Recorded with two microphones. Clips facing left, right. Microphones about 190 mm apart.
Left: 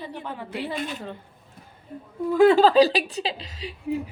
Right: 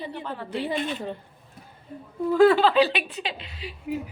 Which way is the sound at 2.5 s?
40° left (ahead or behind).